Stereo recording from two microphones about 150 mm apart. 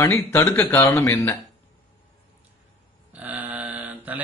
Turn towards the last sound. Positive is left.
turn(degrees=-10)  # may be behind; listen again after turning